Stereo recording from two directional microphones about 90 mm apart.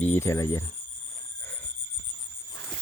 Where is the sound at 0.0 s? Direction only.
25° left (ahead or behind).